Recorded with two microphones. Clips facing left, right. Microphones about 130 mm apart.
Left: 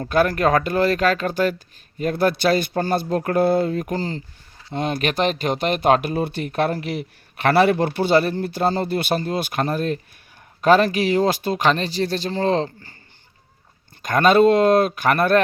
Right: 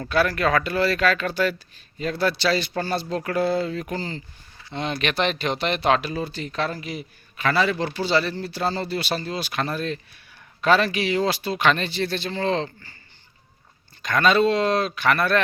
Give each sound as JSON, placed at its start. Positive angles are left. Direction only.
{"t": 0.0, "sound": "speech", "side_deg": 45}
{"t": 14.0, "sound": "speech", "side_deg": 50}